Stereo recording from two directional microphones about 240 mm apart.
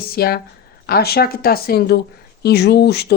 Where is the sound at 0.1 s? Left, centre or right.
Left.